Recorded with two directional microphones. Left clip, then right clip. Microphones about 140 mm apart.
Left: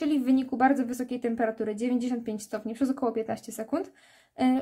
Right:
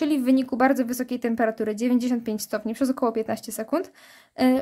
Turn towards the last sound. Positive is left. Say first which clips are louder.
# right 5 dB
turn(degrees=-40)  # may be behind; listen again after turning